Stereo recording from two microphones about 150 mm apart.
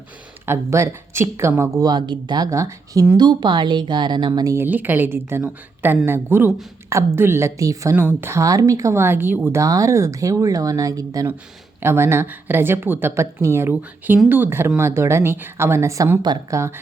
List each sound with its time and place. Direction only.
0.4 s a woman's voice: 15° right (ahead or behind)